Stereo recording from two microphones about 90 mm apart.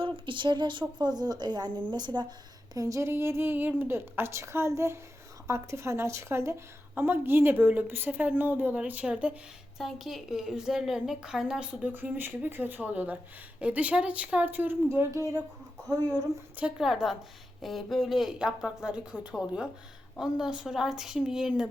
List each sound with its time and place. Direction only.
0.0 s a woman's voice: 65° right (ahead or behind)
2.7 s a woman's voice: 35° right (ahead or behind)
16.1 s a woman's voice: 10° right (ahead or behind)